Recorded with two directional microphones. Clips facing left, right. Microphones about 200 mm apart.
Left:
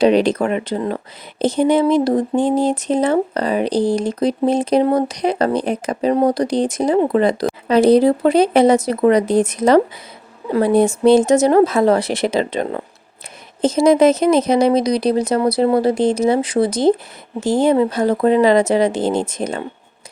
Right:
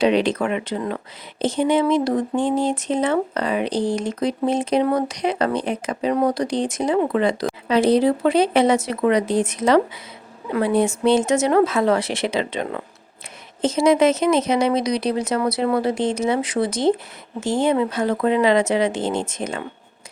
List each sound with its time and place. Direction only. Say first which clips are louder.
0.0 s speech: left 4 dB; 40° left (ahead or behind)